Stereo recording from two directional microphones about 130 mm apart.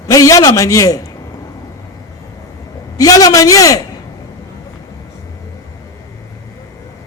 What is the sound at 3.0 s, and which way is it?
Speech, 30° left (ahead or behind).